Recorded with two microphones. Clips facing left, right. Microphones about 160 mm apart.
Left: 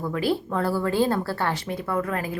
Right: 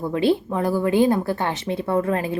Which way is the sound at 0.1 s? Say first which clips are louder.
Right 5 dB; 25° right (ahead or behind).